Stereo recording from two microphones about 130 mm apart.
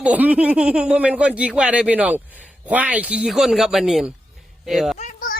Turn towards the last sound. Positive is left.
turn(degrees=65)  # may be behind; listen again after turning